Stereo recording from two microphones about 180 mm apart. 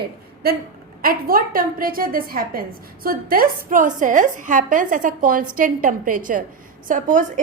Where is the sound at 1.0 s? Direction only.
55° right (ahead or behind).